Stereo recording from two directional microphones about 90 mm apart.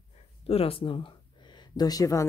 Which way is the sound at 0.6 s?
85° left.